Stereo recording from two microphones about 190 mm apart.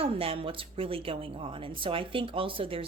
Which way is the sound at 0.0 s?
30° right (ahead or behind).